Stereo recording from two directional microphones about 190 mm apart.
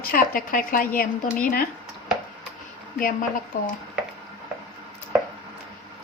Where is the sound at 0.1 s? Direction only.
45° left (ahead or behind).